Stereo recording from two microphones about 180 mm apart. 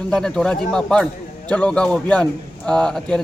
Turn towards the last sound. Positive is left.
turn(degrees=5)  # may be behind; listen again after turning